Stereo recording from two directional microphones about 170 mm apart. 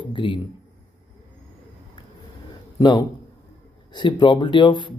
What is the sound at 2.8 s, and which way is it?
A man's voice, 25° left (ahead or behind).